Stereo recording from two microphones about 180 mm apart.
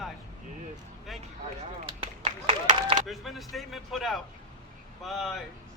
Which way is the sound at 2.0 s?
30° right (ahead or behind).